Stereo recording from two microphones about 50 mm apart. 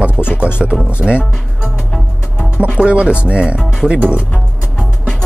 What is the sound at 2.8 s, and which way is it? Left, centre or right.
Speech, right.